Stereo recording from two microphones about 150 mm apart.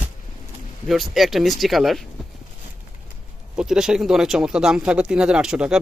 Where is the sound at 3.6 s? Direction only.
5° right (ahead or behind).